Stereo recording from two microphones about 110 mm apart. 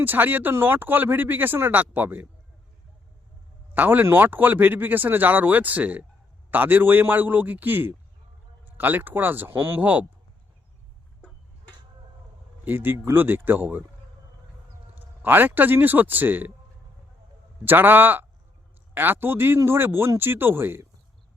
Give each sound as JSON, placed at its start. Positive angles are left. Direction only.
{"t": 0.0, "sound": "speech", "side_deg": -15}
{"t": 3.8, "sound": "speech", "side_deg": -15}
{"t": 12.6, "sound": "speech", "side_deg": -20}
{"t": 14.9, "sound": "a man's voice", "side_deg": -15}
{"t": 17.7, "sound": "speech", "side_deg": -20}